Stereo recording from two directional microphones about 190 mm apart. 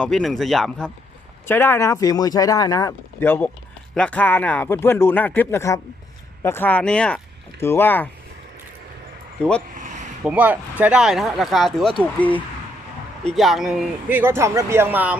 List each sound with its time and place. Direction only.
0.0 s speech: centre (ahead or behind)
1.5 s speech: 10° left (ahead or behind)
9.4 s speech: 5° left (ahead or behind)
9.7 s a sound: 40° right (ahead or behind)
10.2 s speech: 5° right (ahead or behind)